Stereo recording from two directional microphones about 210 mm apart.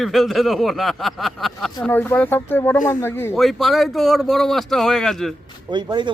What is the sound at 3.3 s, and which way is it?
Speech, centre (ahead or behind).